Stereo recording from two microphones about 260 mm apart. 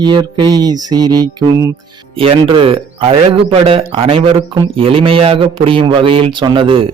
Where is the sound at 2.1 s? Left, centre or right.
Right.